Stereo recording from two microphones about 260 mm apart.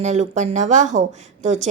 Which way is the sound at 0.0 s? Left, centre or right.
Right.